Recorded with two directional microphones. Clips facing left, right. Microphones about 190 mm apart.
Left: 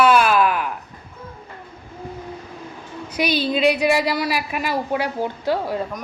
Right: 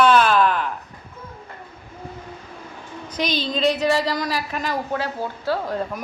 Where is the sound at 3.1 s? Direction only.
10° left (ahead or behind).